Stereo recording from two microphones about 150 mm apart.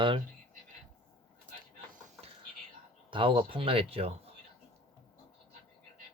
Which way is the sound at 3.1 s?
35° right (ahead or behind).